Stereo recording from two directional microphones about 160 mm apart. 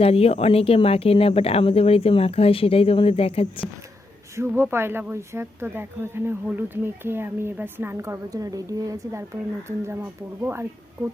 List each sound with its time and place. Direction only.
0.0 s speech: 40° left (ahead or behind)
4.4 s speech: 15° right (ahead or behind)